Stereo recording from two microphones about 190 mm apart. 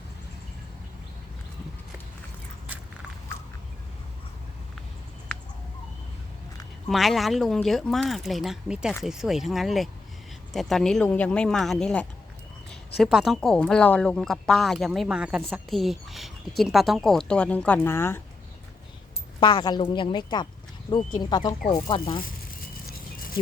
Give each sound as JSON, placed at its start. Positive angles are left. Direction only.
{"t": 6.8, "sound": "speech", "side_deg": 0}
{"t": 19.4, "sound": "a woman's voice", "side_deg": 20}